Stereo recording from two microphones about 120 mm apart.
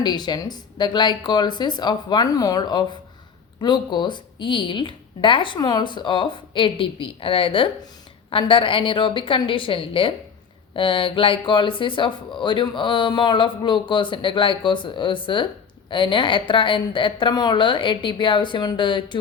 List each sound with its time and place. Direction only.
0.0 s speech: 35° left (ahead or behind)